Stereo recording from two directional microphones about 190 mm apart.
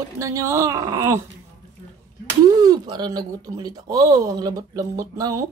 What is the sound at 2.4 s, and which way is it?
Speech, 20° right (ahead or behind).